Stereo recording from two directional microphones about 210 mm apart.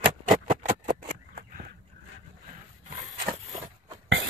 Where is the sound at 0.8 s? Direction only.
45° right (ahead or behind).